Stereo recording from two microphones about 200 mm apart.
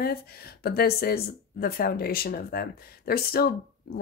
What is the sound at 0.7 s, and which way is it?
Speech, 50° left (ahead or behind).